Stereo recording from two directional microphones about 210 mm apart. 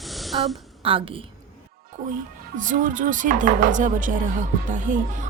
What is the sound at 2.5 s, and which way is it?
Speech, 40° right (ahead or behind).